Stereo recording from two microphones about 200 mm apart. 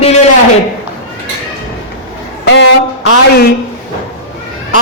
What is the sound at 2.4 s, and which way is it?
Speech, 60° left (ahead or behind).